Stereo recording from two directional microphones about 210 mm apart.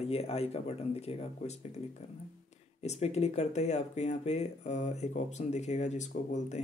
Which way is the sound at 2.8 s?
30° left (ahead or behind).